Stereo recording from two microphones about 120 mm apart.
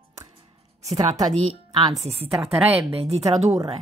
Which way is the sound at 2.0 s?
55° right (ahead or behind).